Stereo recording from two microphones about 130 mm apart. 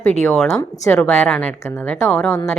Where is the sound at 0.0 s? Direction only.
10° left (ahead or behind).